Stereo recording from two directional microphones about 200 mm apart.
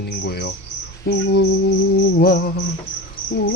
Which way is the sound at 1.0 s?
55° left (ahead or behind).